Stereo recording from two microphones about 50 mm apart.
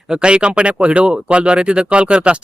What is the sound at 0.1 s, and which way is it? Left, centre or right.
Speech, centre.